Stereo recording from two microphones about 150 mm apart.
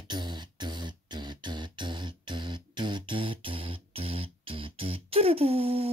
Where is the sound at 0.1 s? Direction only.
30° right (ahead or behind).